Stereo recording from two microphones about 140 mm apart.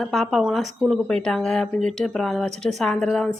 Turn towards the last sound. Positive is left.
turn(degrees=5)  # may be behind; listen again after turning